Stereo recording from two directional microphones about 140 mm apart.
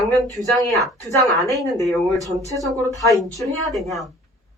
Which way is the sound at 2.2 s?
25° right (ahead or behind).